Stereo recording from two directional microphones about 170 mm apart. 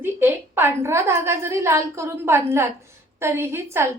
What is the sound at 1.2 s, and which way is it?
A woman's voice, 15° right (ahead or behind).